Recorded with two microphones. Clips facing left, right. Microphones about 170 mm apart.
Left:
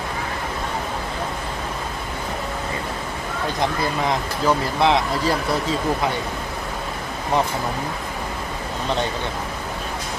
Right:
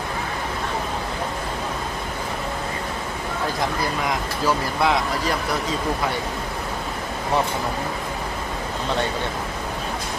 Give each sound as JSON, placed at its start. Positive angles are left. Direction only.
{"t": 4.4, "sound": "speech", "side_deg": 25}